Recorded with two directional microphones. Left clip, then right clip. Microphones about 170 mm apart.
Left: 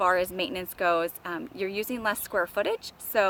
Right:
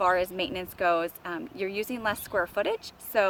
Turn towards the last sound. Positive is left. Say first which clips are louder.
# even
turn(degrees=20)  # may be behind; listen again after turning